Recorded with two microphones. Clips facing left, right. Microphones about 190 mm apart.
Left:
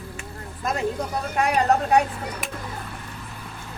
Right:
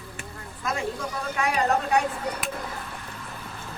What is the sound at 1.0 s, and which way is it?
Speech, 40° left (ahead or behind).